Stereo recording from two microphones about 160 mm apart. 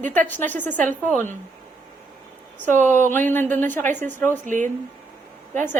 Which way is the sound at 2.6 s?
50° right (ahead or behind).